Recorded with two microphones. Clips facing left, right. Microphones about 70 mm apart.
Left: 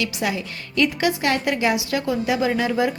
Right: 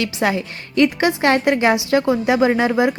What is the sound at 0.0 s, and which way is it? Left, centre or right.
A woman's voice, right.